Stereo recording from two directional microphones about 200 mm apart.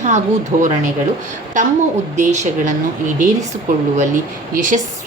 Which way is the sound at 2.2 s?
35° right (ahead or behind).